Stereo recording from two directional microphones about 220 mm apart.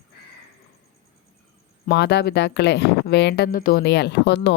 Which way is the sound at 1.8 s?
50° left (ahead or behind).